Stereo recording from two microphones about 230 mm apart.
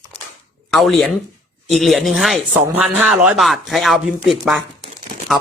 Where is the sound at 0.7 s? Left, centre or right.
Centre.